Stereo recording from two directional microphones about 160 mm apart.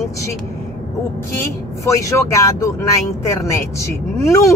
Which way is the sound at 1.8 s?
20° left (ahead or behind).